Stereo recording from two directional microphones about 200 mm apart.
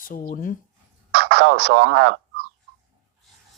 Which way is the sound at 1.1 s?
60° right (ahead or behind).